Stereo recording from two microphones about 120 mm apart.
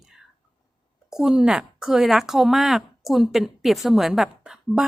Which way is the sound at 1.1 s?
5° right (ahead or behind).